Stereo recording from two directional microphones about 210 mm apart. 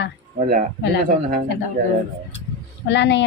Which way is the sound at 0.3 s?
40° right (ahead or behind).